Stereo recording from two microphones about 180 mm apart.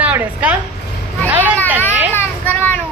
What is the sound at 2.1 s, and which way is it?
Children playing, 10° left (ahead or behind).